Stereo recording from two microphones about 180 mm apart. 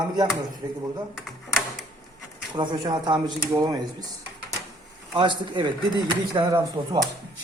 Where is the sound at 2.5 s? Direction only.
25° right (ahead or behind).